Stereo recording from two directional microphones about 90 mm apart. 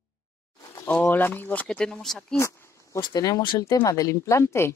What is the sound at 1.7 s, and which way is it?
Speech, 5° left (ahead or behind).